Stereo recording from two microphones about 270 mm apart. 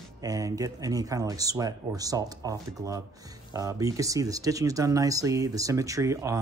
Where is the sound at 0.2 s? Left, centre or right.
Centre.